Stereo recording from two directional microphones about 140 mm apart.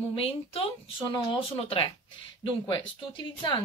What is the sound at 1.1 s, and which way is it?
Speech, 35° left (ahead or behind).